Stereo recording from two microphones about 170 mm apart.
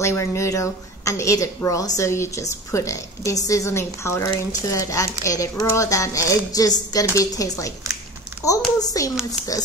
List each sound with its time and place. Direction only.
0.0 s a woman's voice: 15° left (ahead or behind)